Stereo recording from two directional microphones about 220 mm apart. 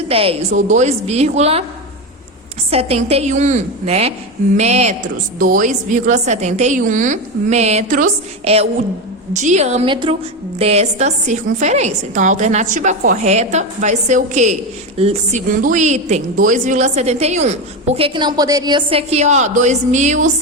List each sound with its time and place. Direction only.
0.1 s a woman's voice: 25° right (ahead or behind)
2.6 s a woman's voice: 25° right (ahead or behind)